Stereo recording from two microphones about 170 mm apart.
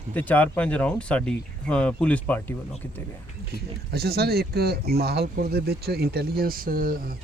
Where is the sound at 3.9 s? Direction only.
70° right (ahead or behind).